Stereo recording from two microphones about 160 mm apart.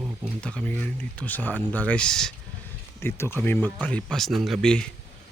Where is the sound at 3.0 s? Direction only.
15° left (ahead or behind).